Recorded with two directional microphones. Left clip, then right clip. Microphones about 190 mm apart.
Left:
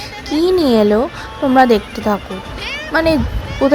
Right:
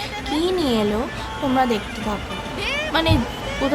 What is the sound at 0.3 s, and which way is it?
A woman's voice, 40° left (ahead or behind).